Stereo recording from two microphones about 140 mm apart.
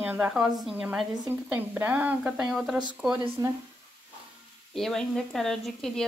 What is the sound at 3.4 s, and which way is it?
Speech, 30° right (ahead or behind).